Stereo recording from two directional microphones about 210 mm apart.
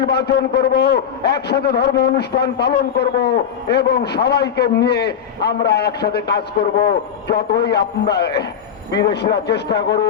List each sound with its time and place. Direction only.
0.0 s a man's voice: 50° left (ahead or behind)